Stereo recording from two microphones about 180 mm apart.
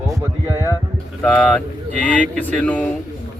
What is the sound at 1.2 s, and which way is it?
A man's voice, 5° left (ahead or behind).